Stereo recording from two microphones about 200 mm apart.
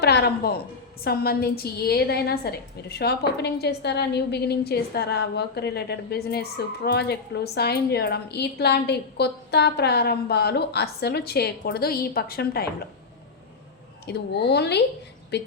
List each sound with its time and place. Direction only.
0.0 s a woman's voice: 55° left (ahead or behind)
14.1 s a woman's voice: 55° left (ahead or behind)